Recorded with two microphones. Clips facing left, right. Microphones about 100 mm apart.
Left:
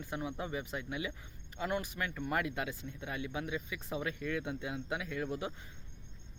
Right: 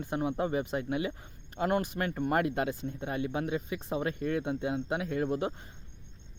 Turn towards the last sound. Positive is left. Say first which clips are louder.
# right 7 dB
turn(degrees=-45)  # may be behind; listen again after turning